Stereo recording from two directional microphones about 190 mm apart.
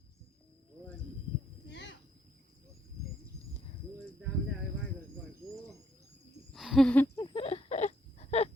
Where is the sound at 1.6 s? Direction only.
65° left (ahead or behind).